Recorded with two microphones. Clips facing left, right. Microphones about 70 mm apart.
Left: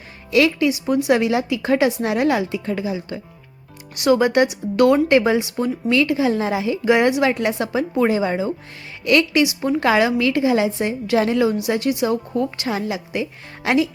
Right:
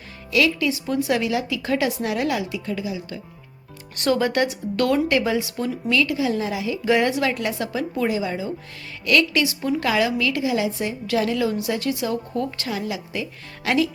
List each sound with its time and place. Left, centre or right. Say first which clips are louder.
0.3 s a woman's voice: left 4 dB; left
3.9 s a woman's voice: left 5 dB; centre; by 6.7 s left
6.8 s a woman's voice: left 4 dB; left
8.1 s speech: left 5 dB; left
9.0 s a woman's voice: left 3 dB; left